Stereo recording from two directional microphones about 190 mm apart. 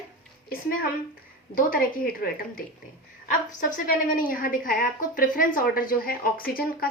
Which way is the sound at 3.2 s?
40° left (ahead or behind).